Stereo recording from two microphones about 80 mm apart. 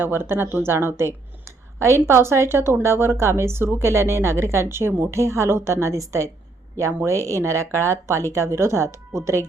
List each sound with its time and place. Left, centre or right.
0.0 s a woman's voice: right